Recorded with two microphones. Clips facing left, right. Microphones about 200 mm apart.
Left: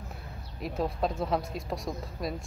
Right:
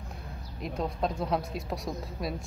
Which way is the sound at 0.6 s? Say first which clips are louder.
Left 1 dB; centre (ahead or behind).